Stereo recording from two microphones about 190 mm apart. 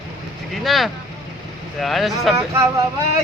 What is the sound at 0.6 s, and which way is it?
Speech, centre (ahead or behind).